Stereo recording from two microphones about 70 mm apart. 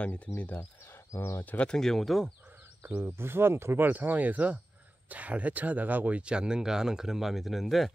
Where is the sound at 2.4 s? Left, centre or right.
Right.